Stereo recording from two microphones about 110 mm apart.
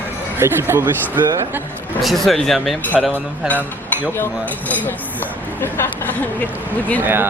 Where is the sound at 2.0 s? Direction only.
Centre (ahead or behind).